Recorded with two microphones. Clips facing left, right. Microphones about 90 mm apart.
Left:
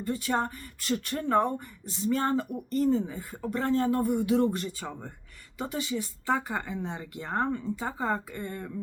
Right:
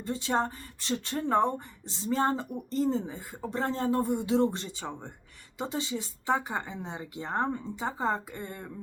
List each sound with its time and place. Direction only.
0.0 s speech: 25° right (ahead or behind)